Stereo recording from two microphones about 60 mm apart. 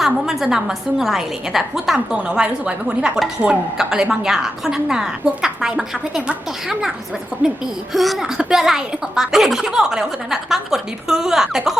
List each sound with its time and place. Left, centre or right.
0.0 s a woman's voice: centre
2.1 s a woman's voice: centre
7.9 s a woman's voice: centre